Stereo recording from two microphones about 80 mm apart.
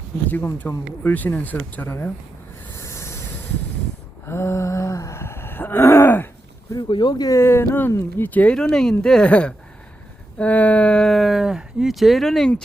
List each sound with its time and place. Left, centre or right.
0.3 s speech: left
2.7 s a sound: left
4.3 s gasp: left
6.8 s speech: left
7.3 s speech: left
8.5 s speech: centre
11.1 s speech: centre